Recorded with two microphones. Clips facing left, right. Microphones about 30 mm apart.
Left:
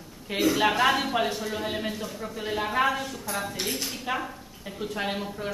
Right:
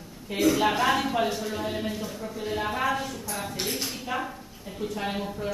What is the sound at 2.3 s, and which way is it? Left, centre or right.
Speech, left.